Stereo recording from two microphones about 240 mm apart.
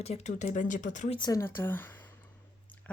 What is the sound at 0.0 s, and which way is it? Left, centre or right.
Speech, left.